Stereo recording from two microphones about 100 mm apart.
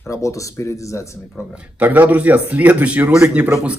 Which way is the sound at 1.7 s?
15° right (ahead or behind).